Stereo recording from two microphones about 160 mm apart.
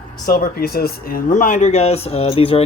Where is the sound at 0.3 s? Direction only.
65° left (ahead or behind).